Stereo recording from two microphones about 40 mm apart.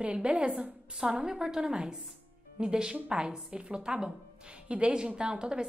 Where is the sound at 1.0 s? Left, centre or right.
Centre.